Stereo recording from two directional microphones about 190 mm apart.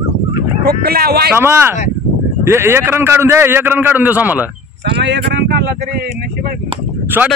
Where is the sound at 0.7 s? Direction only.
55° right (ahead or behind).